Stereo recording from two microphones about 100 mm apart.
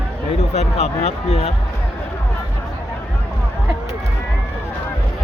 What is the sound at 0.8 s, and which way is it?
Speech, 90° left.